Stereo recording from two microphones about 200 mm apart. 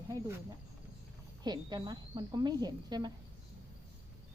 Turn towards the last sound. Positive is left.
turn(degrees=-20)  # may be behind; listen again after turning